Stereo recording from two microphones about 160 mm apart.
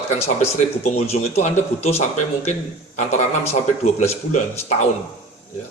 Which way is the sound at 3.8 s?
45° left (ahead or behind).